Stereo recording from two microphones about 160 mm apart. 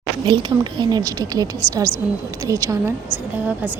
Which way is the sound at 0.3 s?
30° right (ahead or behind).